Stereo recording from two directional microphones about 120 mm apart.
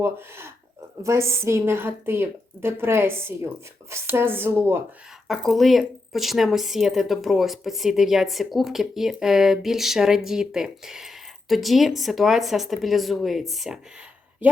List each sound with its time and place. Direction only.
0.0 s a woman's voice: 20° right (ahead or behind)
5.3 s a woman's voice: centre (ahead or behind)